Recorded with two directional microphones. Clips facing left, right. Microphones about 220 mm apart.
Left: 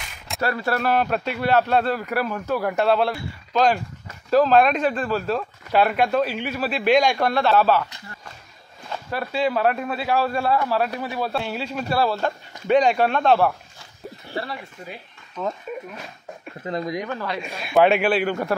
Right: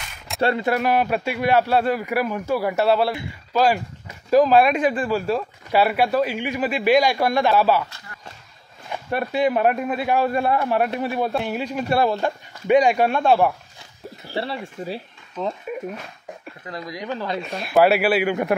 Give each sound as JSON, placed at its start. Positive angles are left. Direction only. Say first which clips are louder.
{"t": 0.4, "sound": "speech", "louder": "right 3 dB", "side_deg": -20}
{"t": 8.9, "sound": "a man's voice", "louder": "right 3 dB", "side_deg": -15}
{"t": 14.3, "sound": "speech", "louder": "right 4 dB", "side_deg": -30}
{"t": 16.6, "sound": "speech", "louder": "left 7 dB", "side_deg": 25}
{"t": 17.0, "sound": "a man's voice", "louder": "right 1 dB", "side_deg": -20}
{"t": 17.6, "sound": "speech", "louder": "right 1 dB", "side_deg": -5}